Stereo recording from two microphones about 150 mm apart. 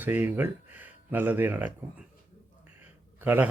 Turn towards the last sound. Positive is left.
turn(degrees=-10)  # may be behind; listen again after turning